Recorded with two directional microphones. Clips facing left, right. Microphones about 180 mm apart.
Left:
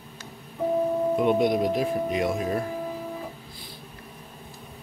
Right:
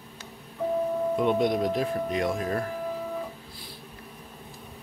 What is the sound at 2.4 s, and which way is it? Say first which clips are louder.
Speech: left 2 dB; 15° left (ahead or behind).